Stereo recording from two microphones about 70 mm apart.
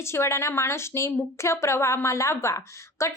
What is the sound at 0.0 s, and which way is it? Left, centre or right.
A woman's voice, left.